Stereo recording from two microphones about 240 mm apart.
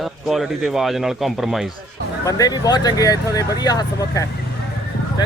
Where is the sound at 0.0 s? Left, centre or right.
Centre.